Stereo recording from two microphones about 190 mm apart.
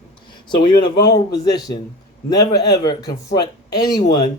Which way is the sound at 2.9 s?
20° left (ahead or behind).